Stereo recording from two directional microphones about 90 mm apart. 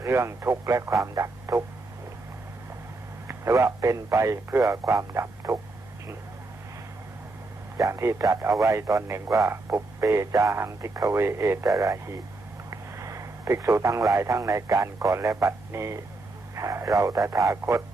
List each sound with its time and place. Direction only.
0.0 s speech: 30° right (ahead or behind)
3.2 s speech: 30° right (ahead or behind)
7.8 s speech: 30° right (ahead or behind)
12.7 s radio: 35° right (ahead or behind)
14.1 s speech: 35° right (ahead or behind)